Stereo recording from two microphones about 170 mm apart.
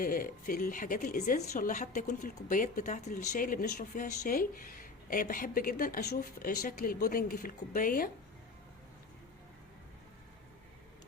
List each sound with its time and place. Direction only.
0.0 s speech: 55° left (ahead or behind)